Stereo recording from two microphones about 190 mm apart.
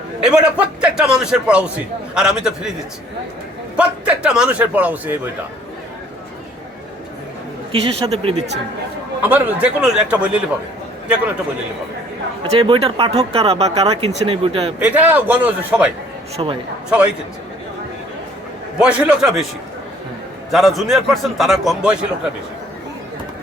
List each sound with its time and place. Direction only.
0.2 s a man's voice: 5° right (ahead or behind)
3.8 s a man's voice: 5° right (ahead or behind)
7.7 s speech: 30° right (ahead or behind)
9.2 s a man's voice: 10° right (ahead or behind)
12.4 s speech: 30° right (ahead or behind)
14.8 s a man's voice: 10° right (ahead or behind)
16.4 s speech: 25° right (ahead or behind)
16.9 s a man's voice: 5° right (ahead or behind)
18.8 s a man's voice: 5° right (ahead or behind)
20.5 s a man's voice: centre (ahead or behind)